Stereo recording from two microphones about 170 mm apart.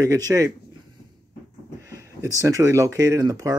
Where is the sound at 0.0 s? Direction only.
20° right (ahead or behind).